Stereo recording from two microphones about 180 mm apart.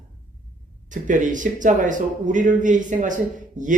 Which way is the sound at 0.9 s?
45° right (ahead or behind).